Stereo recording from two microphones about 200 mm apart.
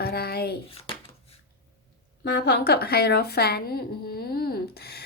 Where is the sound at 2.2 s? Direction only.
55° left (ahead or behind).